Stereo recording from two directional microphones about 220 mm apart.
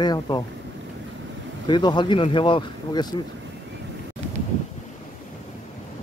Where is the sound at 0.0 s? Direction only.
20° left (ahead or behind).